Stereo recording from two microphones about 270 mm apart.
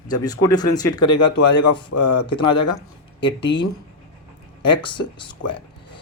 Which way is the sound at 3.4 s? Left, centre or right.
Left.